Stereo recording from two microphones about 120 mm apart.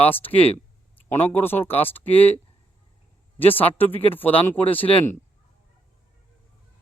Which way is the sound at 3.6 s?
15° left (ahead or behind).